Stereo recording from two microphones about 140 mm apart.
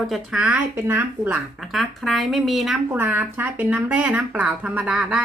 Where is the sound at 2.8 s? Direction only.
15° right (ahead or behind).